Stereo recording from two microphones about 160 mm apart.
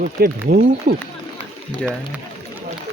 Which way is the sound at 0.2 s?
70° right (ahead or behind).